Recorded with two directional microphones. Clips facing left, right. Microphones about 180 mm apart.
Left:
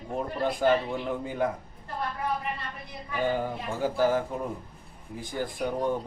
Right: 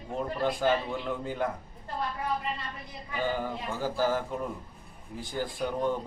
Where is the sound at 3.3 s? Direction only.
15° left (ahead or behind).